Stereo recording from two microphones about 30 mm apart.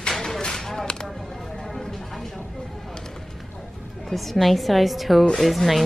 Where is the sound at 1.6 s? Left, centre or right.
Centre.